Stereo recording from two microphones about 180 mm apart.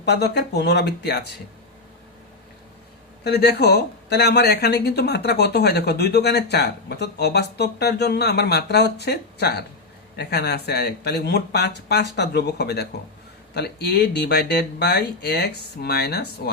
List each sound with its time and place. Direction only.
0.0 s speech: 70° left (ahead or behind)
3.2 s speech: 65° left (ahead or behind)